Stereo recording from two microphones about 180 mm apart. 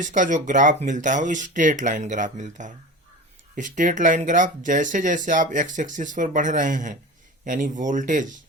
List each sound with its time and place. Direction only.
0.0 s speech: 45° right (ahead or behind)